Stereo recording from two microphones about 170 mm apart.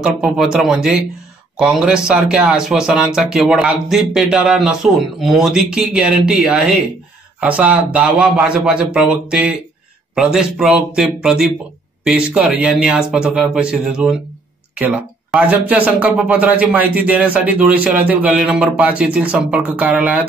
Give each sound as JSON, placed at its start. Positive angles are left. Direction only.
{"t": 0.0, "sound": "speech", "side_deg": -5}